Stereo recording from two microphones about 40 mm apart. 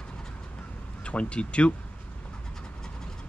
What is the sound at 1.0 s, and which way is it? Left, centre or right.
Speech, left.